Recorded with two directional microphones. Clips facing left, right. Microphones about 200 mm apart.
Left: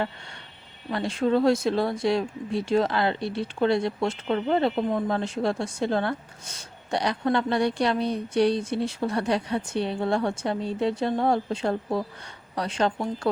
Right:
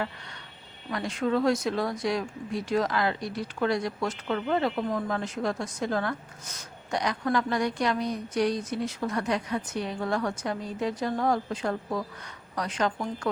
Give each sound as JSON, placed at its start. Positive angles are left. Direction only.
{"t": 0.9, "sound": "speech", "side_deg": 30}